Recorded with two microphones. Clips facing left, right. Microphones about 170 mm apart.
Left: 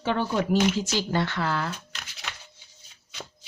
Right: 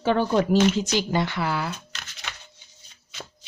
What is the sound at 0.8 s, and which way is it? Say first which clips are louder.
Speech: right 2 dB; 15° right (ahead or behind).